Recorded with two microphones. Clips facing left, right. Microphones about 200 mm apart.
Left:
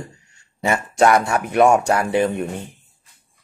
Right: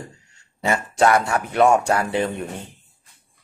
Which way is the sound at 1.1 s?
20° left (ahead or behind).